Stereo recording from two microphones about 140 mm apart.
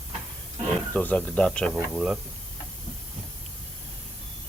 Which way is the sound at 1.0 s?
10° left (ahead or behind).